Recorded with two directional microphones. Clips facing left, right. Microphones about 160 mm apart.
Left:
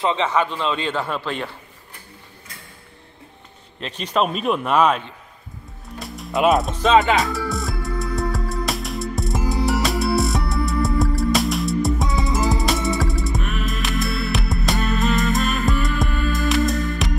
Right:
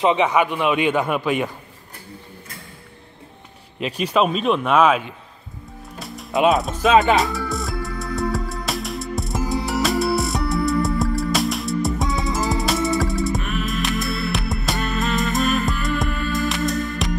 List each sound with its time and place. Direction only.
0.0 s a man's voice: 15° right (ahead or behind)
3.8 s speech: 10° right (ahead or behind)
5.9 s music: centre (ahead or behind)